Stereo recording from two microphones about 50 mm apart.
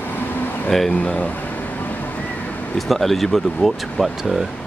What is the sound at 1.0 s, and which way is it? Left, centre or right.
Speech, left.